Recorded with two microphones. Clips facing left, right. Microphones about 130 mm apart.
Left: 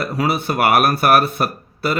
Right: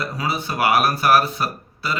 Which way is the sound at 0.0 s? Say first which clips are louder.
Left 5 dB; 55° left (ahead or behind).